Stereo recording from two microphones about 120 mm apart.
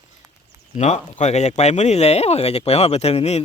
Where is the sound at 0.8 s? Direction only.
75° left (ahead or behind).